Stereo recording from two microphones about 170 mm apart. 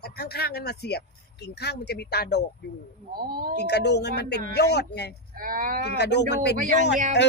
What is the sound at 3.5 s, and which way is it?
Speech, 75° left (ahead or behind).